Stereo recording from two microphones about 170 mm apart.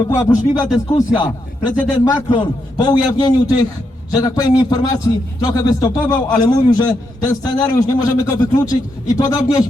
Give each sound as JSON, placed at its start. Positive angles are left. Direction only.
{"t": 0.1, "sound": "a man's voice", "side_deg": 20}